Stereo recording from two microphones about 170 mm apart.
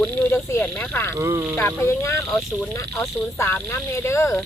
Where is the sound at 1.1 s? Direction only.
15° right (ahead or behind).